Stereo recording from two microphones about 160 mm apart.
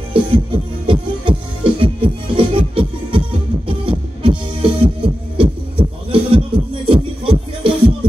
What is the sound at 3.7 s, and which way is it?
Music, 35° right (ahead or behind).